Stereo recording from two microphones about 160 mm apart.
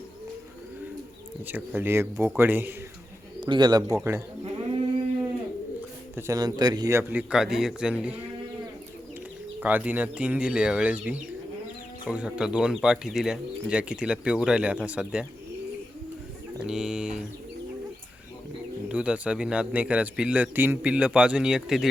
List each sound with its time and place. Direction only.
1.5 s a man's voice: 10° right (ahead or behind)
3.4 s speech: 30° right (ahead or behind)
6.1 s a man's voice: 20° right (ahead or behind)
9.6 s a man's voice: 10° right (ahead or behind)
16.6 s speech: 5° right (ahead or behind)
18.9 s a man's voice: 5° right (ahead or behind)